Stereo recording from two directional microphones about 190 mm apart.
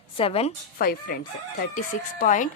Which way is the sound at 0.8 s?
50° left (ahead or behind).